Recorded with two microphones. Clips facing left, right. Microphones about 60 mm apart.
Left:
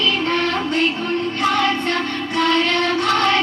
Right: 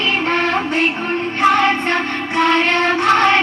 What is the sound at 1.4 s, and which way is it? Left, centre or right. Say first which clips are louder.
Child singing: right 6 dB; right.